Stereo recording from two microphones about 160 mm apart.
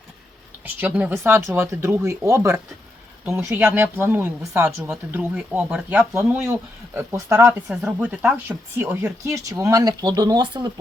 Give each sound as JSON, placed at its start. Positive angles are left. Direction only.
{"t": 0.6, "sound": "speech", "side_deg": -10}